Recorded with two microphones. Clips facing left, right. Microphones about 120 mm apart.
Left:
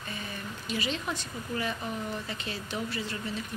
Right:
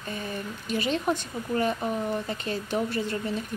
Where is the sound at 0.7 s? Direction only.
50° right (ahead or behind).